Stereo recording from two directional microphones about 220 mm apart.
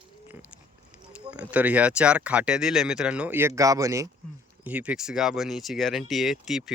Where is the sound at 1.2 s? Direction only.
5° right (ahead or behind).